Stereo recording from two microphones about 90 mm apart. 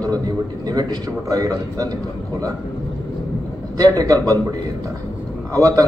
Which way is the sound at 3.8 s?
40° right (ahead or behind).